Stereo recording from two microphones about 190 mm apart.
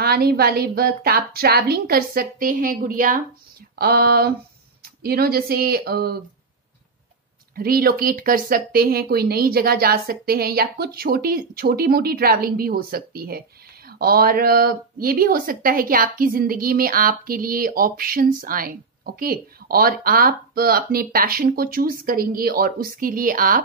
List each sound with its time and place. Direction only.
0.0 s speech: 55° right (ahead or behind)
7.5 s speech: 50° right (ahead or behind)